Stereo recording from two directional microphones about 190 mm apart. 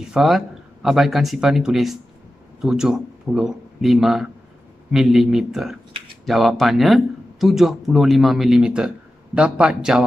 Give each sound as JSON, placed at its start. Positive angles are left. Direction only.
{"t": 0.0, "sound": "a man's voice", "side_deg": 0}